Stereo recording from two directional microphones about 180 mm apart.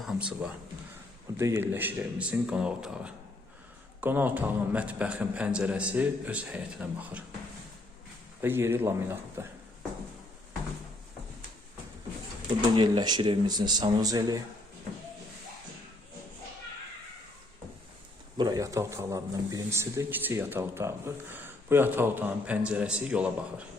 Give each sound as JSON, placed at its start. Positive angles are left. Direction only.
{"t": 0.0, "sound": "speech", "side_deg": -5}
{"t": 1.4, "sound": "speech", "side_deg": -15}
{"t": 8.4, "sound": "speech", "side_deg": -15}
{"t": 12.7, "sound": "speech", "side_deg": -25}
{"t": 18.3, "sound": "speech", "side_deg": -20}